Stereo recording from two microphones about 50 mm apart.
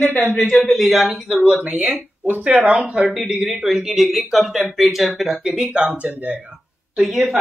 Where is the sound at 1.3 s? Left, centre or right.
Right.